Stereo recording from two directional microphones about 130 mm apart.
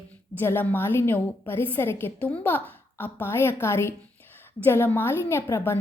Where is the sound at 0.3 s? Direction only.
15° left (ahead or behind).